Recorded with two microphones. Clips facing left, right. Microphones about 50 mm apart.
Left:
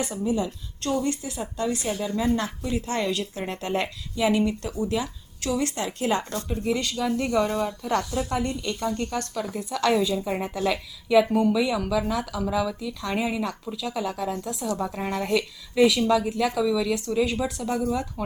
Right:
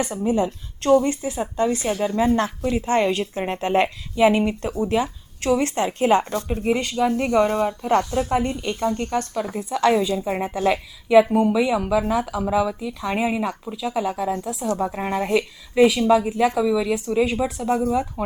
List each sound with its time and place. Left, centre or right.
0.2 s speech: right
1.0 s a woman's voice: right